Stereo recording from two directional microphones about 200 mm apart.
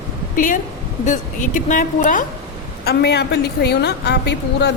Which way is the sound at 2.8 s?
55° left (ahead or behind).